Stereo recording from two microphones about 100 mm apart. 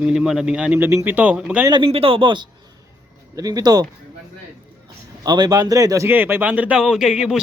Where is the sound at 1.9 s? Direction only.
70° right (ahead or behind); by 2.5 s 50° right (ahead or behind).